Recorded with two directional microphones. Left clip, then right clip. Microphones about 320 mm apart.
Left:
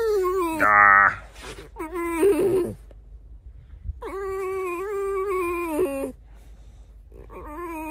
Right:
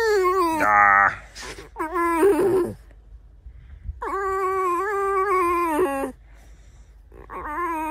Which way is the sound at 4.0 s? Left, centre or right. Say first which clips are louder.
Right 5 dB; centre.